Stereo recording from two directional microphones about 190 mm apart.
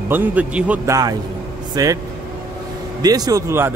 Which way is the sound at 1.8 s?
20° right (ahead or behind).